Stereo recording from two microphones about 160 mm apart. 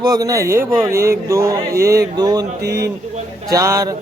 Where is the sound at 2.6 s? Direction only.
90° right.